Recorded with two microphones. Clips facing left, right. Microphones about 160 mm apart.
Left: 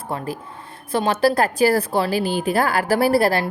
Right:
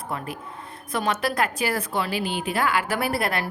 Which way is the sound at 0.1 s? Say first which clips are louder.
Left 6 dB; 30° left (ahead or behind).